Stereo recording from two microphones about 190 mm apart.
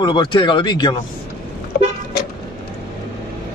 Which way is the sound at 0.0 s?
25° left (ahead or behind).